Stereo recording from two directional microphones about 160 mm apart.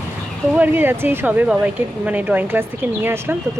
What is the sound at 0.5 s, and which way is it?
Speech, 10° right (ahead or behind).